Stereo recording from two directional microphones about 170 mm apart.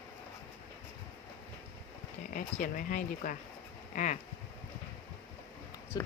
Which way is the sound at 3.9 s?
45° left (ahead or behind).